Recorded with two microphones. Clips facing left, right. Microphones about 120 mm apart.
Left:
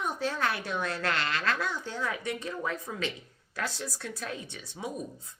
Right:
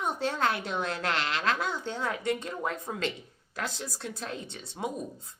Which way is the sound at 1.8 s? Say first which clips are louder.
Right 2 dB; 60° right (ahead or behind).